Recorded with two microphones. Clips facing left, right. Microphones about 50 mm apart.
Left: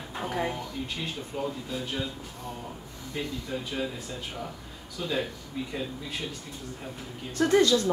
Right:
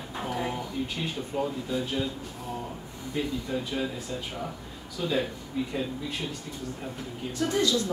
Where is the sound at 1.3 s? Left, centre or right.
Centre.